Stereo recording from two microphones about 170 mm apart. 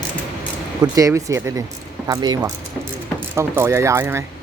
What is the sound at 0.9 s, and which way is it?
Speech, 20° right (ahead or behind).